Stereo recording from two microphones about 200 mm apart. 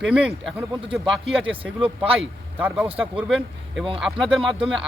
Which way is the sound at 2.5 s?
10° right (ahead or behind).